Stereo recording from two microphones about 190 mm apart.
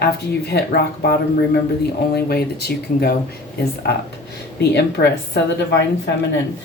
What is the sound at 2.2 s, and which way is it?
Speech, 55° left (ahead or behind).